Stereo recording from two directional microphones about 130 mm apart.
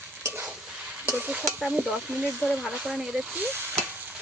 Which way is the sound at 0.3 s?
10° right (ahead or behind).